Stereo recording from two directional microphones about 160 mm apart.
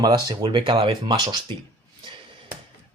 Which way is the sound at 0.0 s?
25° right (ahead or behind).